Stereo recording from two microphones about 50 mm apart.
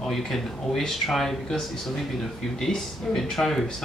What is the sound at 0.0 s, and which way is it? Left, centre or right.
Speech, centre.